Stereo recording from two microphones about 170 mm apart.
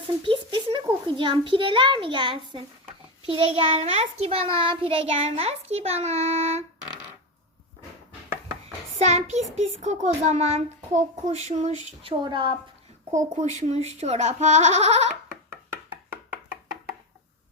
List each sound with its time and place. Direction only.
0.2 s a child's voice: 30° right (ahead or behind)
9.0 s a child's voice: 40° right (ahead or behind)
12.0 s a woman's voice: 30° right (ahead or behind)
13.1 s a child's voice: 45° right (ahead or behind)